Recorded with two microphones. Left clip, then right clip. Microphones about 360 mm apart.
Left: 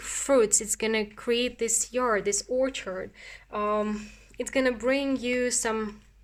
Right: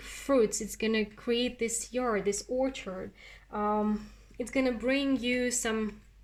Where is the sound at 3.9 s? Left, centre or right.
Left.